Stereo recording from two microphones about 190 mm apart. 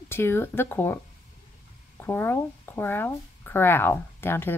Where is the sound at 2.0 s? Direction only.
10° left (ahead or behind).